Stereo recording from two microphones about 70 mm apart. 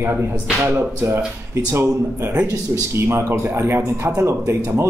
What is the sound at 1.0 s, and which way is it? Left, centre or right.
Speech, right.